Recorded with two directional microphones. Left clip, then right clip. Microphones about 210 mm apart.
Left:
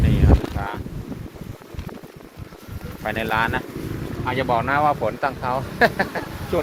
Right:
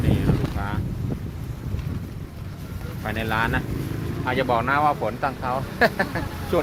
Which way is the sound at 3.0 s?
25° left (ahead or behind).